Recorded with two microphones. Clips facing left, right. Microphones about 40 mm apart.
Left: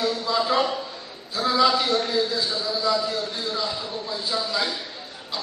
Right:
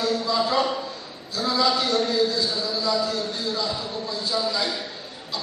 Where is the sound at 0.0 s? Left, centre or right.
Centre.